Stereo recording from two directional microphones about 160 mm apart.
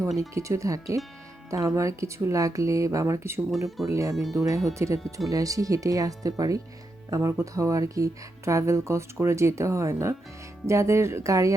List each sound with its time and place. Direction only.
0.2 s speech: 20° right (ahead or behind)
4.1 s speech: centre (ahead or behind)
4.4 s speech: 20° right (ahead or behind)